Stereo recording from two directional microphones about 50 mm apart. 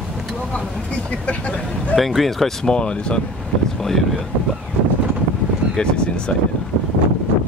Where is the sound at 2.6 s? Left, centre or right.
Centre.